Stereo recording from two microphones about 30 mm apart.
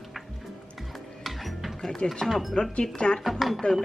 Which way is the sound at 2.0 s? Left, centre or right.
Left.